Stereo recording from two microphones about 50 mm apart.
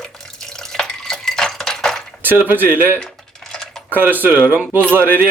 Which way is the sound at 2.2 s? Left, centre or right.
Right.